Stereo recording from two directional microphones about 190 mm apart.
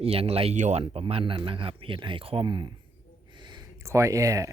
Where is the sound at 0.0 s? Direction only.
30° right (ahead or behind).